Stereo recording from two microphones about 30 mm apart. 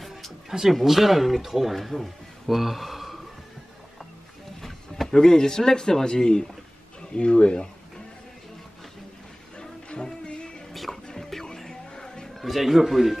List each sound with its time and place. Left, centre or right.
0.5 s a man's voice: centre
4.6 s a sound: centre
5.1 s speech: left
7.1 s speech: left
9.6 s music: left
10.7 s music: centre
11.4 s music: left
12.4 s speech: centre